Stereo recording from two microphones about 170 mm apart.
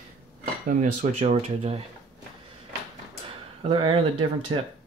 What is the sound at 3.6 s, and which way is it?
Speech, 30° right (ahead or behind).